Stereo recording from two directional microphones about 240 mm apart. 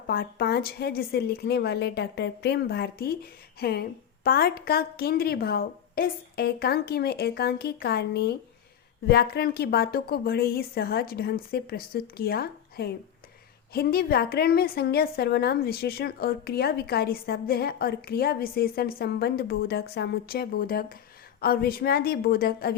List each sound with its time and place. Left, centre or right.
0.1 s a woman's voice: left